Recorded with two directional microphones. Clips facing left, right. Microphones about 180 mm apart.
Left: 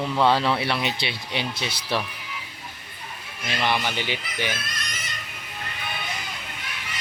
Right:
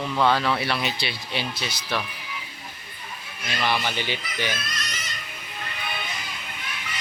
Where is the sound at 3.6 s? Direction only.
15° left (ahead or behind).